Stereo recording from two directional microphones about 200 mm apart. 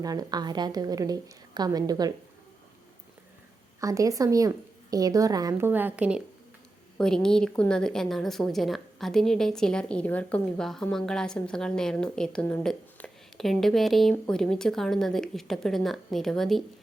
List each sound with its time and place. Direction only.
0.0 s a woman's voice: 20° right (ahead or behind)
3.8 s a woman's voice: 15° right (ahead or behind); by 16.6 s centre (ahead or behind)